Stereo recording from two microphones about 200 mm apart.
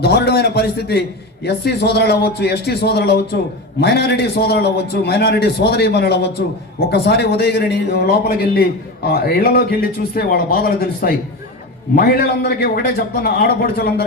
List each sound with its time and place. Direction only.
0.0 s a man's voice: 55° left (ahead or behind)